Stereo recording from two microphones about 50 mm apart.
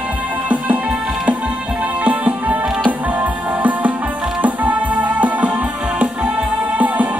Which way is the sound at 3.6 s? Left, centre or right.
Right.